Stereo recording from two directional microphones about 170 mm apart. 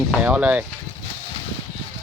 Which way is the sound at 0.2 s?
10° right (ahead or behind).